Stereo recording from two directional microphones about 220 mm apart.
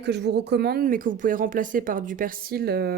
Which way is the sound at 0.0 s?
50° right (ahead or behind).